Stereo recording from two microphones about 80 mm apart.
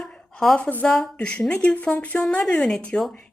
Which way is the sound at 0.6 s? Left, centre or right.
Left.